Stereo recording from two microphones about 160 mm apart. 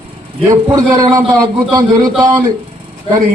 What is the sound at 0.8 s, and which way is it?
Speech, 20° right (ahead or behind).